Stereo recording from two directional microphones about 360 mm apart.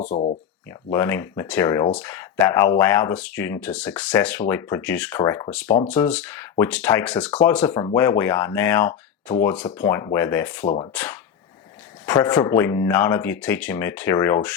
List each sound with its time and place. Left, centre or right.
0.0 s speech: centre
0.7 s speech: centre